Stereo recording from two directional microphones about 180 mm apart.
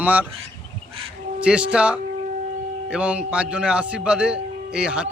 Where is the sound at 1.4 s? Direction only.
5° right (ahead or behind).